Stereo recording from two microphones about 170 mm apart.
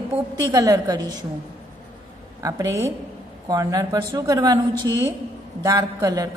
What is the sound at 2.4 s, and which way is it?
A woman's voice, 20° right (ahead or behind).